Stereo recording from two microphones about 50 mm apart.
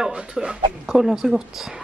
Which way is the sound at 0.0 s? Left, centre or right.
Centre.